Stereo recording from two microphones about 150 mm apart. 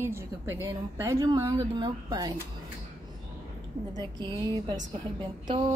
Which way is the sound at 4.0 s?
30° right (ahead or behind).